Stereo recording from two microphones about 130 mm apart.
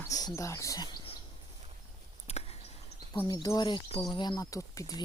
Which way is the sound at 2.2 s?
50° left (ahead or behind).